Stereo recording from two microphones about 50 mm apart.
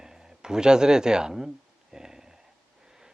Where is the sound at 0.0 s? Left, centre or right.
Centre.